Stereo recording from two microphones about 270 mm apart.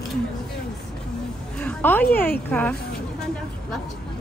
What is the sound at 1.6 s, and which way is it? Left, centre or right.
Speech, centre.